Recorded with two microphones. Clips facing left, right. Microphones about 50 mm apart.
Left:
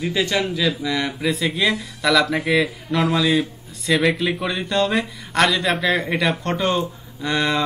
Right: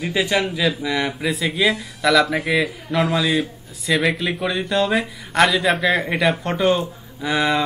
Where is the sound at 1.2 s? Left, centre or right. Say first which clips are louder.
Even; centre.